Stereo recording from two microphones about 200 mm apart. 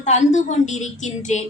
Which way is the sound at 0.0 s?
35° left (ahead or behind).